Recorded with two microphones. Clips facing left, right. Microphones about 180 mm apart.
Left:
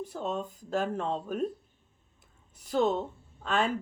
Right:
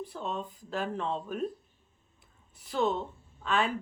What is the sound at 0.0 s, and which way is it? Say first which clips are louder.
Speech: left 3 dB; 45° left (ahead or behind).